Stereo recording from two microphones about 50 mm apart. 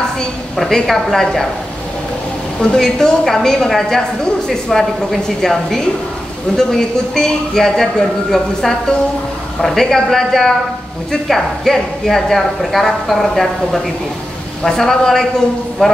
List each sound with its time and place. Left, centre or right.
0.6 s a woman's voice: centre
2.6 s a woman's voice: centre